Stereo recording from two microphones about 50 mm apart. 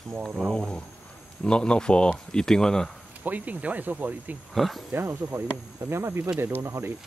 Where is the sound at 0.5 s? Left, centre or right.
Centre.